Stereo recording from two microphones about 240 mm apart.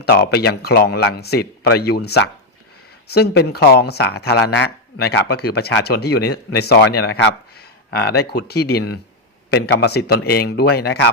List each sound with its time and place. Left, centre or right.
0.0 s speech: left